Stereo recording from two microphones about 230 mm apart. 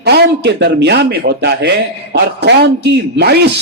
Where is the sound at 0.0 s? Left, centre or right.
Right.